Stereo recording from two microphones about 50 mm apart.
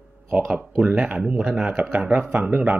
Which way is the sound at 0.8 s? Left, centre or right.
Right.